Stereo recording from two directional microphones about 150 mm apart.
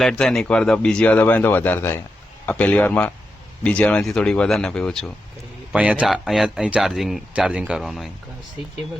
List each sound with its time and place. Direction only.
0.0 s speech: 5° left (ahead or behind)
5.7 s speech: 10° right (ahead or behind)